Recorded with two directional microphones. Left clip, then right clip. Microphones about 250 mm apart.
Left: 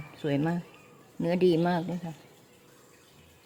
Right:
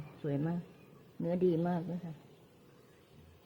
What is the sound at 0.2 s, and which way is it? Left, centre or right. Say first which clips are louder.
Speech: left 8 dB; left.